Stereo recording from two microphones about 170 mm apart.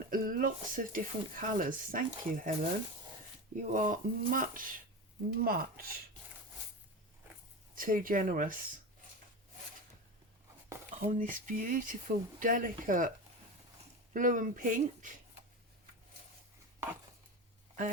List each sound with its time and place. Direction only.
0.1 s speech: 55° right (ahead or behind)
3.7 s speech: 50° right (ahead or behind)
7.8 s speech: 55° right (ahead or behind)
11.0 s speech: 50° right (ahead or behind)